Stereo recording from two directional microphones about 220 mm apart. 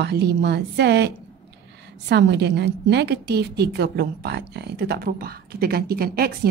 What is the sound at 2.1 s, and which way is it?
A woman's voice, 50° right (ahead or behind).